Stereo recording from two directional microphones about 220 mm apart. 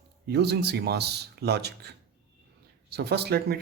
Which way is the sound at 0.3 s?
50° right (ahead or behind).